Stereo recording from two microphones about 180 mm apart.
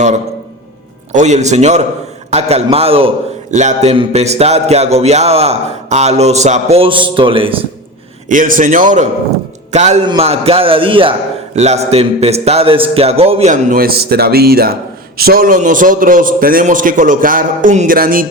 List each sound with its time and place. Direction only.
1.1 s music: 40° right (ahead or behind)
8.3 s a man's voice: 50° right (ahead or behind)
9.7 s music: 40° right (ahead or behind)
11.5 s a man's voice: 40° right (ahead or behind)